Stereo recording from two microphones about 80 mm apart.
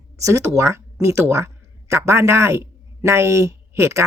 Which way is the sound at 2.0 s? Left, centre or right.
Right.